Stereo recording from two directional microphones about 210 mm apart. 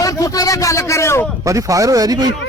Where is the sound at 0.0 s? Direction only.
15° left (ahead or behind).